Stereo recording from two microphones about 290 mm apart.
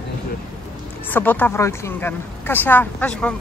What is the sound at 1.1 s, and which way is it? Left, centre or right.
Speech, centre.